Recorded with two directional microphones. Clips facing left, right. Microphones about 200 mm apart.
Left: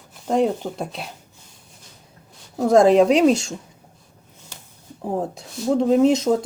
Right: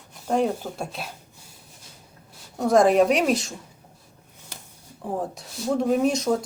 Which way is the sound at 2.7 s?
25° left (ahead or behind).